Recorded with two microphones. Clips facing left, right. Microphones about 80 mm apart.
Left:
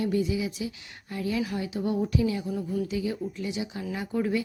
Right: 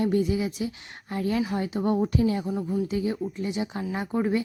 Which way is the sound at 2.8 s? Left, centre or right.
Right.